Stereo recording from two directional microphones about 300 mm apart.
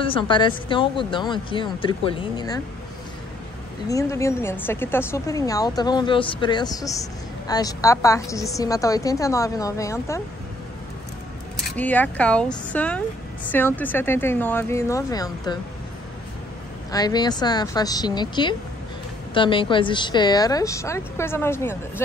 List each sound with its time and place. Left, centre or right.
0.0 s a woman's voice: centre
3.9 s a woman's voice: centre
11.6 s a woman's voice: centre
16.9 s a woman's voice: centre